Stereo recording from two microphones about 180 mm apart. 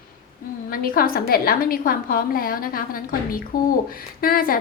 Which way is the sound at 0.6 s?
55° left (ahead or behind).